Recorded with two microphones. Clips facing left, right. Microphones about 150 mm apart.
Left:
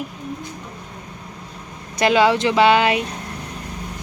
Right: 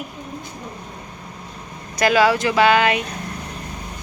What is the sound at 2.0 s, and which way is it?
Speech, 25° left (ahead or behind).